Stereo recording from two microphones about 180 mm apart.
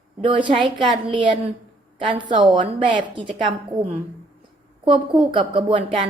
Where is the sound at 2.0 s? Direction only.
25° right (ahead or behind).